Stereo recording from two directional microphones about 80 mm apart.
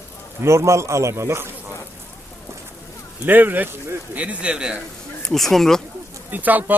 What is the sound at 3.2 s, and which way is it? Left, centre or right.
Speech, right.